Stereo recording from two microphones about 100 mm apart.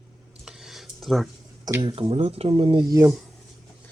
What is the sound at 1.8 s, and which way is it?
Speech, 75° right (ahead or behind).